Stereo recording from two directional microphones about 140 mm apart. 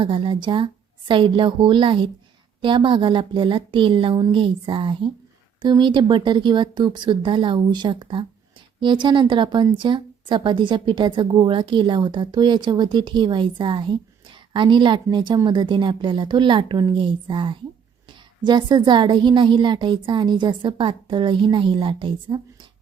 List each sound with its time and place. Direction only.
0.0 s a woman's voice: 35° right (ahead or behind)